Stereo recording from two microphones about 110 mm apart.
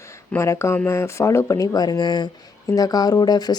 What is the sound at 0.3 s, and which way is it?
Speech, 25° left (ahead or behind).